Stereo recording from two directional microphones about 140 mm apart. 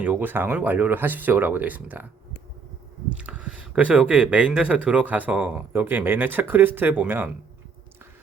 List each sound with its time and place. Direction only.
0.0 s speech: 10° right (ahead or behind)
3.2 s speech: 10° right (ahead or behind)